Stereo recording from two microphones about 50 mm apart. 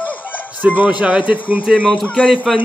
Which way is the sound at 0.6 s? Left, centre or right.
Right.